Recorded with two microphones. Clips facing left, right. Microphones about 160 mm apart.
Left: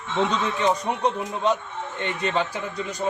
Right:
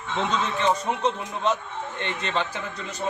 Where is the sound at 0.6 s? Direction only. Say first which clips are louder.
Left 1 dB; 15° left (ahead or behind).